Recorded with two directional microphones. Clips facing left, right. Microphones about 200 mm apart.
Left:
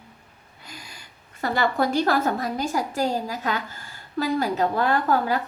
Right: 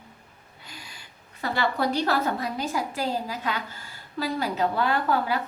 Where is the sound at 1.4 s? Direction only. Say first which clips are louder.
Left 3 dB; 45° left (ahead or behind).